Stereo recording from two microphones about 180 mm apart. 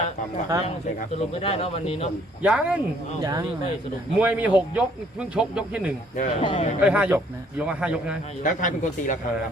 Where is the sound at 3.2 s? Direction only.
20° right (ahead or behind).